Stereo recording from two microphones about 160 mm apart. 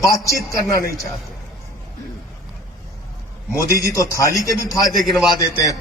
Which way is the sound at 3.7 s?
20° left (ahead or behind).